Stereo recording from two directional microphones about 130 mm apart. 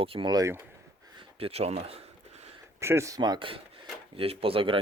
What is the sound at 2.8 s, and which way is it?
Speech, 20° right (ahead or behind).